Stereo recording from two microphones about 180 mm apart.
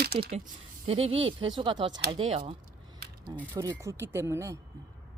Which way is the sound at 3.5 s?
20° right (ahead or behind).